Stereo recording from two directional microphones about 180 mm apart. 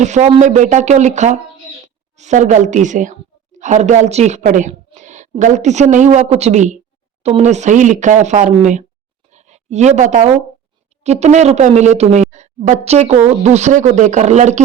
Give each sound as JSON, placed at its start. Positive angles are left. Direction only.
{"t": 0.0, "sound": "a woman's voice", "side_deg": -40}
{"t": 9.3, "sound": "a sound", "side_deg": -40}
{"t": 11.0, "sound": "speech", "side_deg": -40}